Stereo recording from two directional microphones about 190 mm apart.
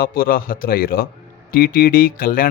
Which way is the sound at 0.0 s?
50° left (ahead or behind).